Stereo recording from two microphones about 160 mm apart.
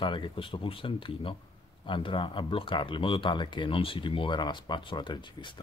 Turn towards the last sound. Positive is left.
turn(degrees=30)  # may be behind; listen again after turning